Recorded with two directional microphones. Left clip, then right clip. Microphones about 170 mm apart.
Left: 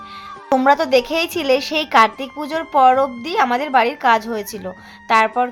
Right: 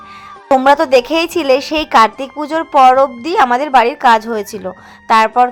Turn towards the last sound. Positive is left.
turn(degrees=-20)  # may be behind; listen again after turning